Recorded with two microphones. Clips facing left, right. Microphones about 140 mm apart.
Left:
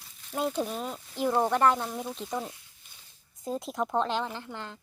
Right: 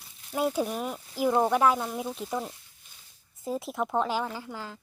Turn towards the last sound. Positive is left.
turn(degrees=-5)  # may be behind; listen again after turning